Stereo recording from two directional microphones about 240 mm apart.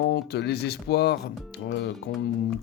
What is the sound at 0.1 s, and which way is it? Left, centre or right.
Speech, left.